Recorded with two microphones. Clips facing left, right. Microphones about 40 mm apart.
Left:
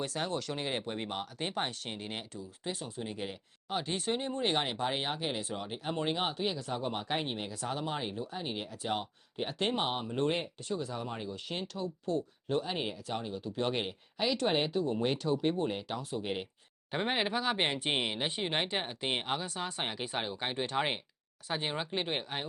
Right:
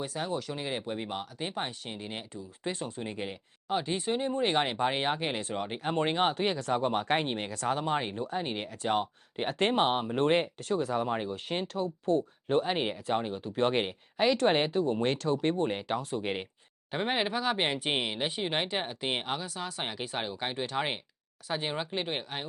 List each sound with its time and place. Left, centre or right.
0.0 s speech: centre
0.5 s speech: centre
2.3 s speech: right
5.4 s speech: right
10.1 s speech: right
11.2 s speech: right
12.7 s speech: right
13.1 s speech: right
16.9 s speech: centre
19.5 s speech: centre
19.8 s speech: centre